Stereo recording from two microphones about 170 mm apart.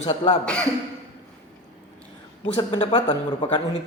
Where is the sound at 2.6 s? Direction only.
30° left (ahead or behind).